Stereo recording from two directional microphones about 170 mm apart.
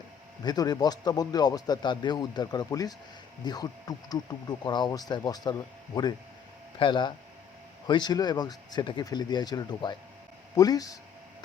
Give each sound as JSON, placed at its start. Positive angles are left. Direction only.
{"t": 0.4, "sound": "speech", "side_deg": 25}